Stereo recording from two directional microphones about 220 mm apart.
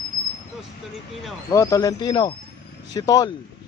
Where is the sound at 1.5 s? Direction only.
15° left (ahead or behind).